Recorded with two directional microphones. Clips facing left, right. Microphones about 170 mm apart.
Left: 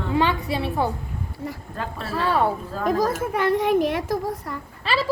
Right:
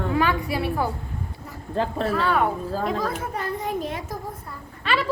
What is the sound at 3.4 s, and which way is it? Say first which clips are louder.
A child's voice: left 10 dB; 75° left (ahead or behind).